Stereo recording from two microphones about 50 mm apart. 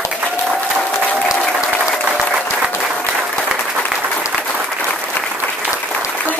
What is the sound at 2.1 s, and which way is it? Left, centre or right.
Applause, centre.